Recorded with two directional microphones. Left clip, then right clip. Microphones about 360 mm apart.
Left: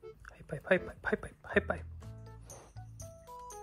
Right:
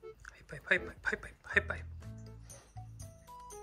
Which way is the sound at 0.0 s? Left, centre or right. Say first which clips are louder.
Even; centre.